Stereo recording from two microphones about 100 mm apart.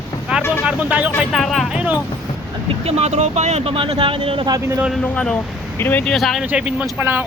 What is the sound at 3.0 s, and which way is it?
Speech, 90° right.